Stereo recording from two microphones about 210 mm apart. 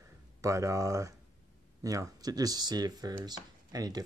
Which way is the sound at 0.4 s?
15° right (ahead or behind).